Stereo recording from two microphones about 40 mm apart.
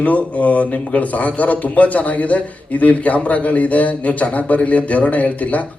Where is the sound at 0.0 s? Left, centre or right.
Left.